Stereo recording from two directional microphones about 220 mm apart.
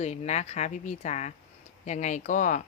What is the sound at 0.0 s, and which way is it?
A woman's voice, 30° left (ahead or behind).